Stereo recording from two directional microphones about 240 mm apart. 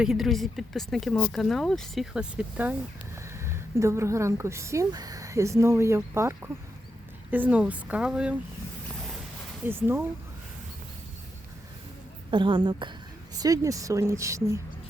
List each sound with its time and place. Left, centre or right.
0.0 s a woman's voice: centre
9.6 s speech: centre
12.3 s a woman's voice: centre